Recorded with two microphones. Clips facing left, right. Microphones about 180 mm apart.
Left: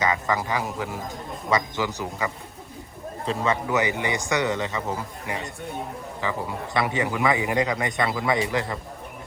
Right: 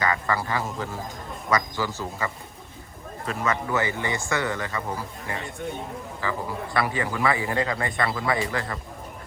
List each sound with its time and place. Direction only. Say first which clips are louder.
0.0 s speech: left 1 dB; 20° left (ahead or behind)